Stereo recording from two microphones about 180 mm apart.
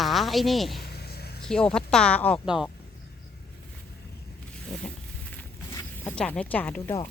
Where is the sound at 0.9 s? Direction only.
60° left (ahead or behind).